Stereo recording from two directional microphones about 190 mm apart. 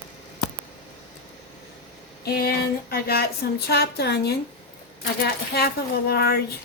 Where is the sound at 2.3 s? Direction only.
55° left (ahead or behind).